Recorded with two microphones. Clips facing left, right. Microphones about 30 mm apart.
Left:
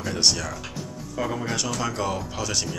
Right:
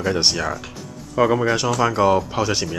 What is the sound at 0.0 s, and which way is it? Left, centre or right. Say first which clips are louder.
Speech: right 4 dB; right.